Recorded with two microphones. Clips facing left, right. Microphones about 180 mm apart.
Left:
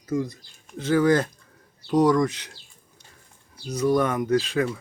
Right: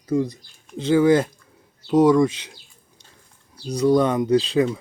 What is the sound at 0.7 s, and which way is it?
Speech, 25° right (ahead or behind).